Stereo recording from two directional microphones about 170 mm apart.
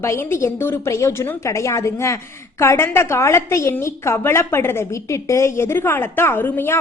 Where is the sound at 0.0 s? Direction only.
15° left (ahead or behind).